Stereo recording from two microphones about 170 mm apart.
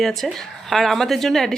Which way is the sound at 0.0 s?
Centre (ahead or behind).